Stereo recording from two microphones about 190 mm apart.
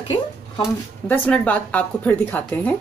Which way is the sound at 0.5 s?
10° left (ahead or behind).